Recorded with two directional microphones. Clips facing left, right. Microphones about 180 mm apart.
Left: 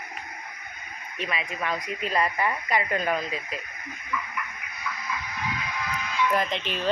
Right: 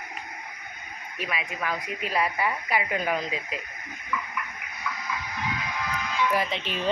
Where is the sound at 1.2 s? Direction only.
5° right (ahead or behind).